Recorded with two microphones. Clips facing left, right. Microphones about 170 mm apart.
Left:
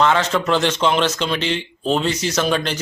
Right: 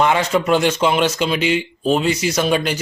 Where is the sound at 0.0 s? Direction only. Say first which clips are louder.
Right 1 dB; 10° right (ahead or behind).